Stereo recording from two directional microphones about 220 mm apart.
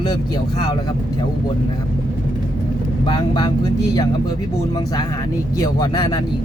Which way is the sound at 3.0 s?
20° left (ahead or behind).